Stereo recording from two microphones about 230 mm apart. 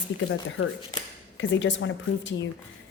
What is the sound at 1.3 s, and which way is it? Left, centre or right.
A woman's voice, left.